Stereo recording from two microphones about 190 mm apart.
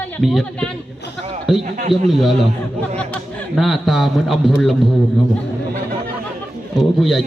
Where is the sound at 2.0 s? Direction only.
Centre (ahead or behind).